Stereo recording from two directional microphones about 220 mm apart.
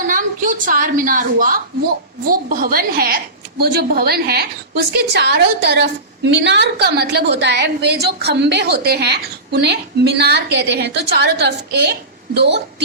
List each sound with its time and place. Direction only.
0.1 s a woman's voice: 35° right (ahead or behind)